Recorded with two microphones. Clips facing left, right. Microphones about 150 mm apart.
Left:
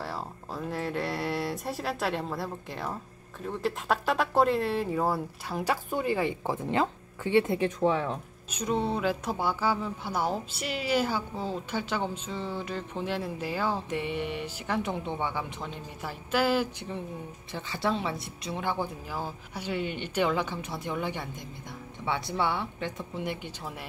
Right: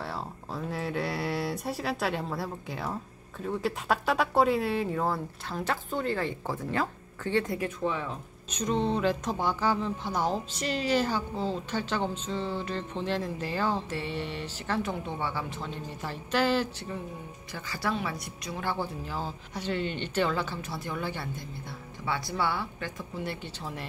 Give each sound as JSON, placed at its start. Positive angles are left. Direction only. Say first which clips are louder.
{"t": 0.0, "sound": "a sound", "louder": "even", "side_deg": 0}
{"t": 3.4, "sound": "speech", "louder": "even", "side_deg": 0}
{"t": 8.5, "sound": "speech", "louder": "right 1 dB", "side_deg": 10}
{"t": 17.5, "sound": "a woman's voice", "louder": "left 2 dB", "side_deg": 25}